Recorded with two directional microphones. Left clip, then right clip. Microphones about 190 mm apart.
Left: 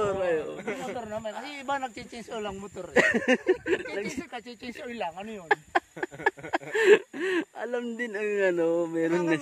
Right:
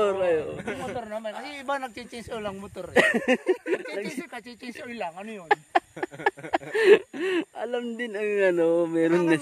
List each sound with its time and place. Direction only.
0.0 s a man's voice: 25° right (ahead or behind)
2.9 s speech: 10° right (ahead or behind)
4.2 s speech: 20° right (ahead or behind)